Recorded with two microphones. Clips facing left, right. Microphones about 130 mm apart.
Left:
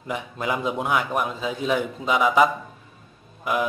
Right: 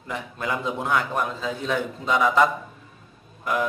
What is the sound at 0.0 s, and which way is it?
A man's voice, 15° left (ahead or behind).